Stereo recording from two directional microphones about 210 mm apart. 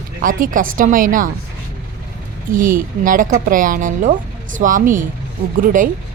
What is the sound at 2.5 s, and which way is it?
Speech, 40° right (ahead or behind).